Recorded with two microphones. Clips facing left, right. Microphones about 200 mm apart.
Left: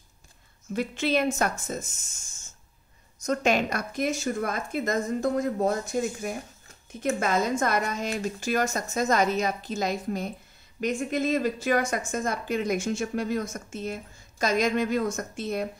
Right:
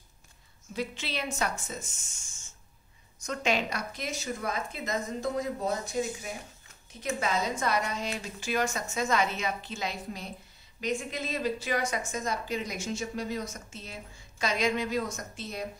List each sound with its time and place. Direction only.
0.7 s a woman's voice: 50° left (ahead or behind)